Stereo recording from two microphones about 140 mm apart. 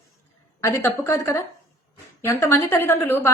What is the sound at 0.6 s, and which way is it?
A woman's voice, 20° left (ahead or behind).